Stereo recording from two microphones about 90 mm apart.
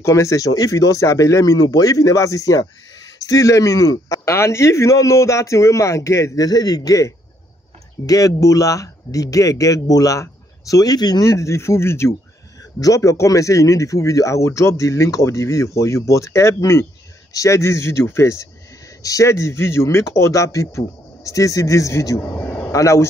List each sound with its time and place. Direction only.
0.0 s speech: 35° left (ahead or behind)
11.2 s speech: 30° left (ahead or behind)